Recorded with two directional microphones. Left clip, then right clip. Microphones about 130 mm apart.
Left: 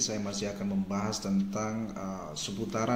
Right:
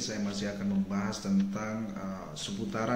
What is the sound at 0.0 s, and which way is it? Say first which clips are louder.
Speech: left 2 dB; 20° left (ahead or behind).